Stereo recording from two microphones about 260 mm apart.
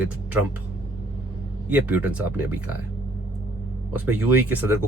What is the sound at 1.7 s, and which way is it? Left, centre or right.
Speech, centre.